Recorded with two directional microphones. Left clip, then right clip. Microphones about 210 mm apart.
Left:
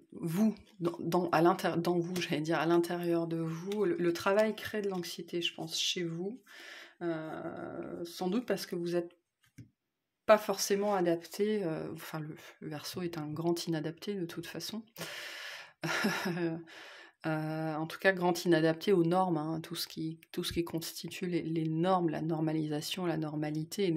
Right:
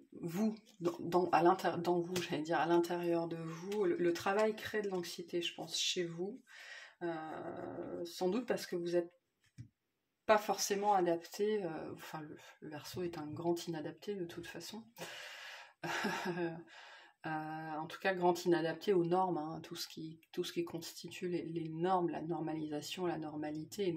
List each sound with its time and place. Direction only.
0.2 s speech: 45° left (ahead or behind)
8.0 s speech: 45° left (ahead or behind)
10.2 s speech: 40° left (ahead or behind)